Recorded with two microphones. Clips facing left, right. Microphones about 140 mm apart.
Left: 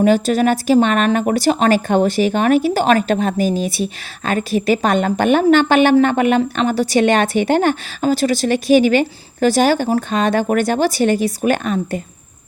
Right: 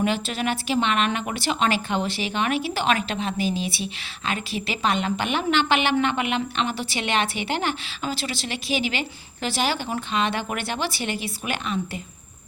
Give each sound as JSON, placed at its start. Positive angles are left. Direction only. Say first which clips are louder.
{"t": 0.0, "sound": "speech", "louder": "left 11 dB", "side_deg": 40}